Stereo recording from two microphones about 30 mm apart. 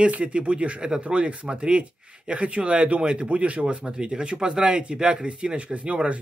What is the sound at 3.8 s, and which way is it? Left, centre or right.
A man's voice, right.